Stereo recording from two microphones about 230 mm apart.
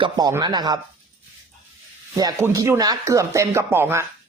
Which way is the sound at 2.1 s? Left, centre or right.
Centre.